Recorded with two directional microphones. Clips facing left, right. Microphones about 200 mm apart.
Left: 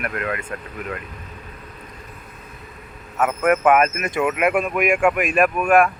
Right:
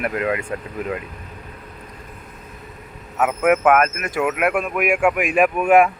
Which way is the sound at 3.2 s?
5° right (ahead or behind).